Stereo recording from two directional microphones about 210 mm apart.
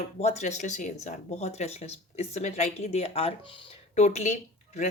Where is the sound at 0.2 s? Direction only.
30° left (ahead or behind).